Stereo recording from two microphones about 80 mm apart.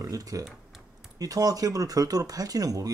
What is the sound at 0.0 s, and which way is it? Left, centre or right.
Speech, right.